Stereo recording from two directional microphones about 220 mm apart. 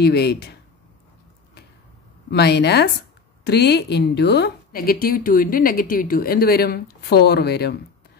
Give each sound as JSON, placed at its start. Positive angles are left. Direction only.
{"t": 0.0, "sound": "a woman's voice", "side_deg": 50}
{"t": 2.3, "sound": "a woman's voice", "side_deg": 50}